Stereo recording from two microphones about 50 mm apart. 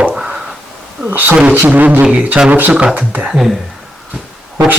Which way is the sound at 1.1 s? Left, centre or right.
Right.